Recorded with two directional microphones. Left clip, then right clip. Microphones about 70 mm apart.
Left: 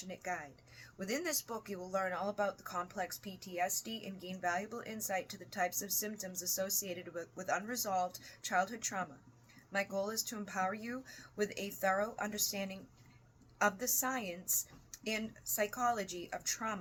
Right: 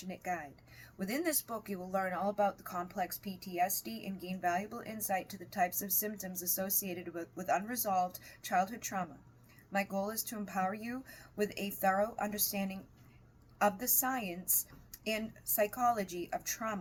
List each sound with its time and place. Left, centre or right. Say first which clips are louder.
0.0 s speech: right 2 dB; left